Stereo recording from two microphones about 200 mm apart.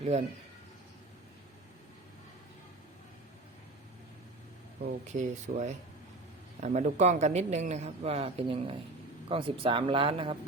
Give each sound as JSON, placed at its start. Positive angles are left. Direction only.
{"t": 4.8, "sound": "a man's voice", "side_deg": -40}